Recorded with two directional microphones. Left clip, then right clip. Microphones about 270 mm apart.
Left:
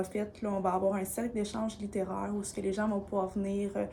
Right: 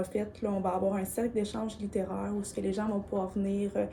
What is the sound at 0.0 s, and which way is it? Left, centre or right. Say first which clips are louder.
Speech: right 2 dB; centre.